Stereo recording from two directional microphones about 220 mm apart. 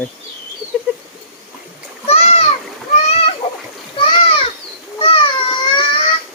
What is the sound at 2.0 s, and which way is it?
Splash, 30° left (ahead or behind).